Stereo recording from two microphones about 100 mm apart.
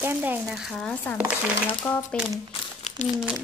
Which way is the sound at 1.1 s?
15° right (ahead or behind).